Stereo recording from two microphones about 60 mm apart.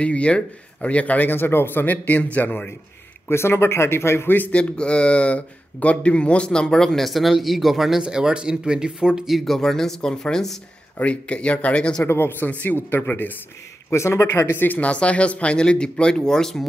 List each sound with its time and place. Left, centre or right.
0.0 s speech: left
1.3 s speech: left
3.3 s speech: left
4.5 s speech: left; by 9.4 s centre
9.4 s speech: centre
11.0 s speech: left
12.0 s speech: left
13.9 s speech: left; by 16.6 s centre